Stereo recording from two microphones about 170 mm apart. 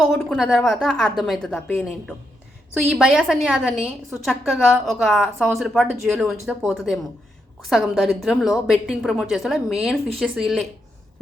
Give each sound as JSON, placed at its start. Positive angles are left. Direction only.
{"t": 0.0, "sound": "a woman's voice", "side_deg": 0}